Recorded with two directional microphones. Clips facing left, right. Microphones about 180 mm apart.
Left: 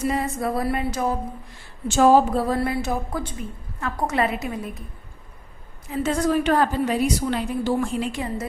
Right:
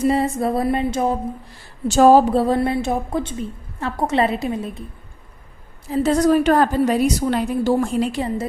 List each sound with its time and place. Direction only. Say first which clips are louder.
0.0 s a woman's voice: right 6 dB; 30° right (ahead or behind)
1.9 s a woman's voice: right 4 dB; 40° right (ahead or behind)
5.9 s a woman's voice: right 6 dB; 35° right (ahead or behind)